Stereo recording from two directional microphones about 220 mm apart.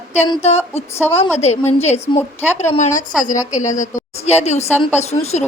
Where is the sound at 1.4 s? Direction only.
30° left (ahead or behind).